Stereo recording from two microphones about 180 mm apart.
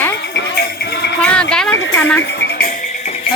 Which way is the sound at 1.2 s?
5° left (ahead or behind).